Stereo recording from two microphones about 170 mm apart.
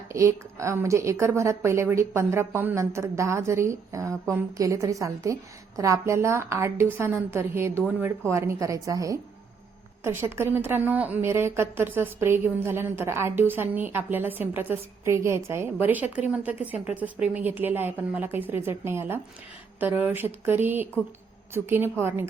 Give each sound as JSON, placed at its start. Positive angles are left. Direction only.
{"t": 0.1, "sound": "a woman's voice", "side_deg": -15}